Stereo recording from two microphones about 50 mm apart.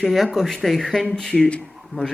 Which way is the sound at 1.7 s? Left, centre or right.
Centre.